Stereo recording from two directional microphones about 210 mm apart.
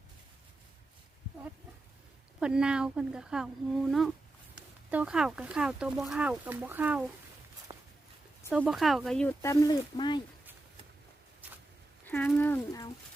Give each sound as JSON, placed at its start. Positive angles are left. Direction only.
{"t": 2.4, "sound": "speech", "side_deg": -5}
{"t": 4.5, "sound": "speech", "side_deg": -5}
{"t": 7.7, "sound": "walk", "side_deg": -15}
{"t": 8.4, "sound": "speech", "side_deg": -5}
{"t": 11.4, "sound": "a sound", "side_deg": -10}
{"t": 12.0, "sound": "speech", "side_deg": 10}